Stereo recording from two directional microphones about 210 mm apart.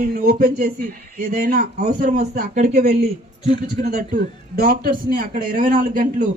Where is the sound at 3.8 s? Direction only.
45° right (ahead or behind).